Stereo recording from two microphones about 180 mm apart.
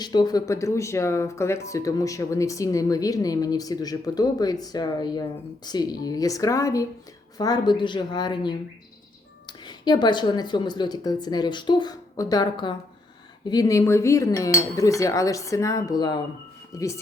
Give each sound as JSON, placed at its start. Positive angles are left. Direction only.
{"t": 0.0, "sound": "speech", "side_deg": 25}